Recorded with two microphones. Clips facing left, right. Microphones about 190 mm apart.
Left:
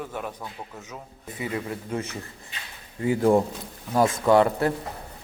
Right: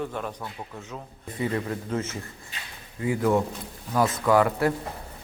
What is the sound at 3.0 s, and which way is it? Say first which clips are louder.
Speech: left 3 dB; 30° left (ahead or behind).